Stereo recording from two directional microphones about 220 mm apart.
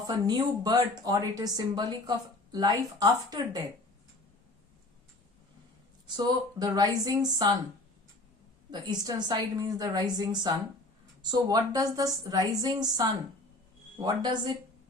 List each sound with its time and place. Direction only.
0.1 s speech: 20° right (ahead or behind)
6.1 s speech: 20° right (ahead or behind)
8.7 s a woman's voice: 20° right (ahead or behind)
14.0 s a woman's voice: 20° right (ahead or behind)